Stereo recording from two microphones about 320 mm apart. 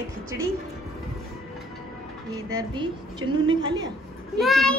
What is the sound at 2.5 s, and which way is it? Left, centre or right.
A woman's voice, centre.